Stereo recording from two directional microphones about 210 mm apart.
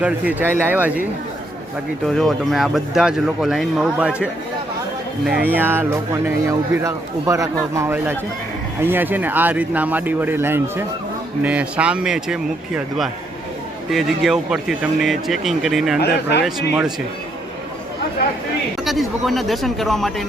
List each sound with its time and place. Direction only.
0.0 s speech: 10° right (ahead or behind)
2.0 s speech: centre (ahead or behind)
16.0 s speech: 50° left (ahead or behind)
16.4 s speech: 5° right (ahead or behind)
18.9 s speech: centre (ahead or behind)